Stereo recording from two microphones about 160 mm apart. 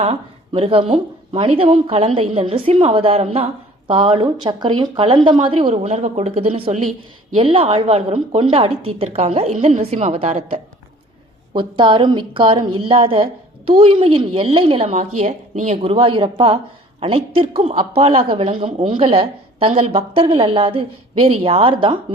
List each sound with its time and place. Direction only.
0.0 s a woman's voice: 40° right (ahead or behind)